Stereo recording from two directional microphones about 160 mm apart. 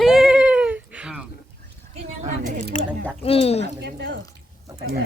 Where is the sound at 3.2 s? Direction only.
40° left (ahead or behind).